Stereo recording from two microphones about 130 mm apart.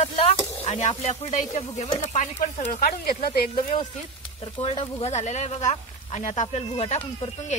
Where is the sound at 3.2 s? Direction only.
90° left.